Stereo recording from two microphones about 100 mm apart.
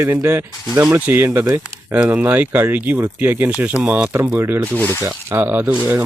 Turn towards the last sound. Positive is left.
turn(degrees=-20)  # may be behind; listen again after turning